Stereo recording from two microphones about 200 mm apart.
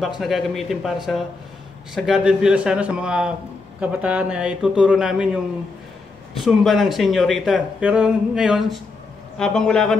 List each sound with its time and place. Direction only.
0.2 s speech: centre (ahead or behind)
6.4 s speech: centre (ahead or behind)